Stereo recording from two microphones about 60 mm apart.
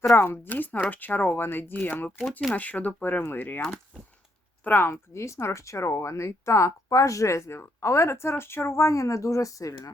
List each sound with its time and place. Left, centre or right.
0.2 s speech: left
4.6 s speech: left
5.1 s speech: left